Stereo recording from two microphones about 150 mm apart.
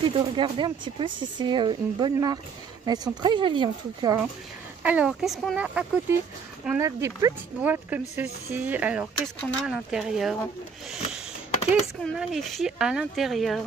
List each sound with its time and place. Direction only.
0.0 s speech: 30° right (ahead or behind)
4.8 s speech: 10° right (ahead or behind)
5.6 s speech: 10° right (ahead or behind)
6.8 s speech: 20° right (ahead or behind)
9.2 s speech: 5° left (ahead or behind)
12.0 s speech: centre (ahead or behind)